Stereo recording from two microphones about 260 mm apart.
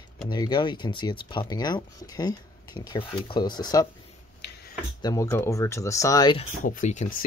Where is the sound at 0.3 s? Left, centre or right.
Centre.